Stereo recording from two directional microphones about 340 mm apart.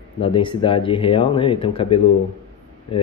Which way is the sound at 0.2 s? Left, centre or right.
Centre.